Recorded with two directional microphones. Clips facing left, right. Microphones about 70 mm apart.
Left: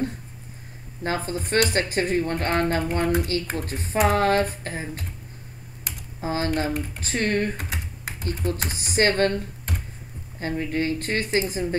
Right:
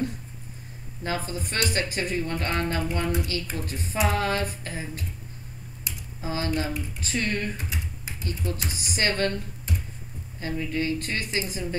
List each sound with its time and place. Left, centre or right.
1.0 s speech: left
5.9 s computer keyboard: left
6.2 s speech: left
6.7 s speech: left
7.1 s speech: left
7.5 s computer keyboard: left
8.3 s speech: left
9.7 s a sound: left
10.4 s speech: left